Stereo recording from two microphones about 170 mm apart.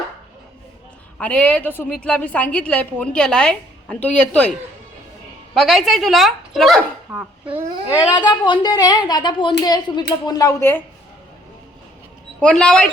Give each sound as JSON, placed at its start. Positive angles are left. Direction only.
{"t": 1.2, "sound": "a woman's voice", "side_deg": 10}
{"t": 5.5, "sound": "a child's voice", "side_deg": 0}
{"t": 7.9, "sound": "speech", "side_deg": 25}
{"t": 12.4, "sound": "speech", "side_deg": 5}